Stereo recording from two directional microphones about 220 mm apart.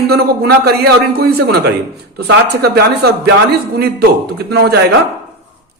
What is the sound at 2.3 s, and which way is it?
A man's voice, 45° right (ahead or behind).